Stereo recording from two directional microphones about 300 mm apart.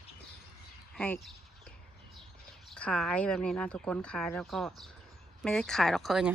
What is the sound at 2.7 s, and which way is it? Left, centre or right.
Speech, centre.